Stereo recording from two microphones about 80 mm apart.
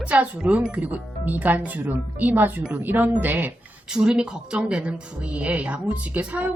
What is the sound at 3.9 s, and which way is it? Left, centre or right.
A woman's voice, centre.